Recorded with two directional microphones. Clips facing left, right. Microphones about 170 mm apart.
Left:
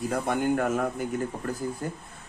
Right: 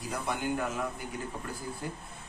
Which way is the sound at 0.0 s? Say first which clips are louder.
Left 7 dB; 50° left (ahead or behind).